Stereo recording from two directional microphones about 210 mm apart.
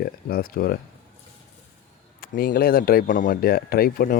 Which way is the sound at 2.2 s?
45° left (ahead or behind).